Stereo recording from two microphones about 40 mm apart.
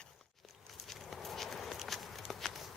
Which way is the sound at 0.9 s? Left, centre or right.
Centre.